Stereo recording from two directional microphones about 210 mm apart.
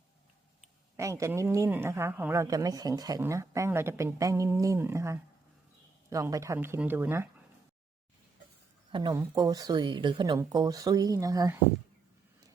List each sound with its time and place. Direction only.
0.9 s a woman's voice: 15° right (ahead or behind)
8.9 s speech: 20° right (ahead or behind)